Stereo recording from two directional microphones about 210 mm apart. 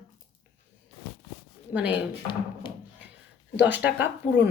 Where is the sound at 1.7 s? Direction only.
5° right (ahead or behind).